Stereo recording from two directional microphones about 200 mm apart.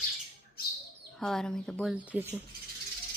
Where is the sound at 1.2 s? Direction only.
Centre (ahead or behind).